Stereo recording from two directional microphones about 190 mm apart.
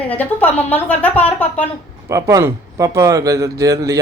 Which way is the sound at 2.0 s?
15° right (ahead or behind).